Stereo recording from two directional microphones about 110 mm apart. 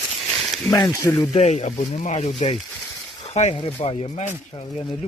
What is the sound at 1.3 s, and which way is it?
Speech, 90° left.